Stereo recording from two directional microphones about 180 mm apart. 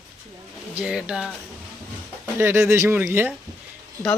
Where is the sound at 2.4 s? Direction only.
15° right (ahead or behind).